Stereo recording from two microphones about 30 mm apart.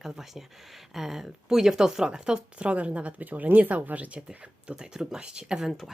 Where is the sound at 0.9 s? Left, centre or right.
Centre.